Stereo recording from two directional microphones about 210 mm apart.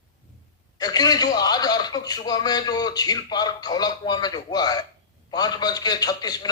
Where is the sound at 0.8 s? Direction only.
20° left (ahead or behind).